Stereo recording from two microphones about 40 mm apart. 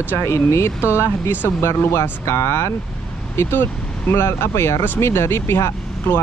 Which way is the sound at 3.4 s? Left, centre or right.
Left.